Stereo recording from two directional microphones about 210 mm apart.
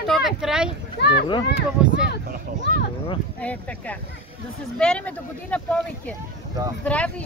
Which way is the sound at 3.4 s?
5° left (ahead or behind).